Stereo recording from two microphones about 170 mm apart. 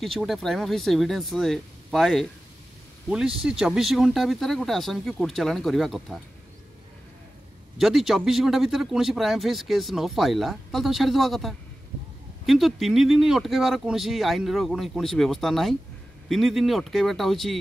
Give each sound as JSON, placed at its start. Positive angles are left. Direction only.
{"t": 0.0, "sound": "a man's voice", "side_deg": 0}
{"t": 7.7, "sound": "a man's voice", "side_deg": 0}